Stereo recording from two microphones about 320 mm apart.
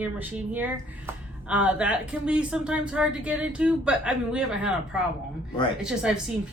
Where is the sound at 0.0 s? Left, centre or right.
Centre.